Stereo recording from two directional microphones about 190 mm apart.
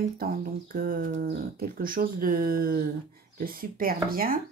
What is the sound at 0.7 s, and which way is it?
Speech, 50° right (ahead or behind).